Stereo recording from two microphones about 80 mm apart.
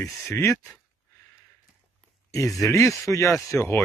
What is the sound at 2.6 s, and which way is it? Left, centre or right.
Speech, left.